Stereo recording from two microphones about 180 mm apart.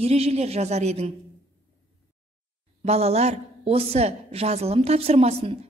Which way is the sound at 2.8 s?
35° right (ahead or behind).